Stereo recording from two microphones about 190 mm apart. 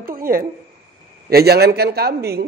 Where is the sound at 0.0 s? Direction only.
50° right (ahead or behind).